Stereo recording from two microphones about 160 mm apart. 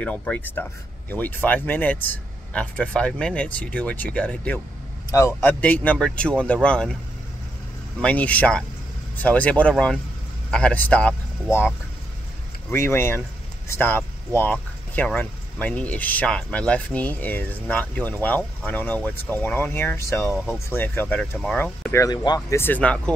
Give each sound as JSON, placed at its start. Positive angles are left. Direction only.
{"t": 0.0, "sound": "speech", "side_deg": 10}
{"t": 8.0, "sound": "speech", "side_deg": 10}
{"t": 12.6, "sound": "speech", "side_deg": 15}
{"t": 22.0, "sound": "speech", "side_deg": 25}
{"t": 22.6, "sound": "speech", "side_deg": 10}